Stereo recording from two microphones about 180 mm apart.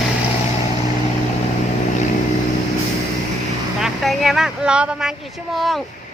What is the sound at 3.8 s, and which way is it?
Speech, centre (ahead or behind).